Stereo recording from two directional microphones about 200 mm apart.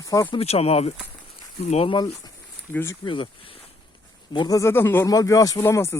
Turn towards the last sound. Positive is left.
turn(degrees=15)  # may be behind; listen again after turning